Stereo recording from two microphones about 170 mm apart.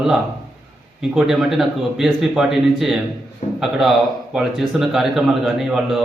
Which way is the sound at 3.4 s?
40° left (ahead or behind).